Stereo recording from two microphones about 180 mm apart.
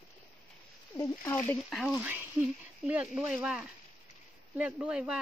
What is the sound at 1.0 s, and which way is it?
Speech, 15° left (ahead or behind).